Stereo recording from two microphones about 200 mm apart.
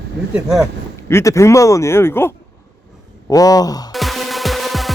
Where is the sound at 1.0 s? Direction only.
15° left (ahead or behind).